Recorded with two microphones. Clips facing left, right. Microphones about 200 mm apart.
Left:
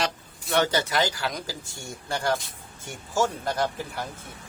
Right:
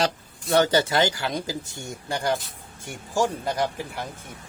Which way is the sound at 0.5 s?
30° right (ahead or behind).